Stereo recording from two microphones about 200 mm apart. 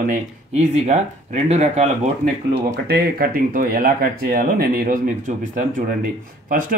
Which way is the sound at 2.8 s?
50° right (ahead or behind).